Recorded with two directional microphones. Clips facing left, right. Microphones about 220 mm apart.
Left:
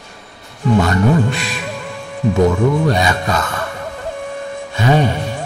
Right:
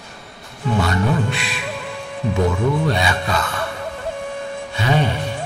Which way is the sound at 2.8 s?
45° left (ahead or behind).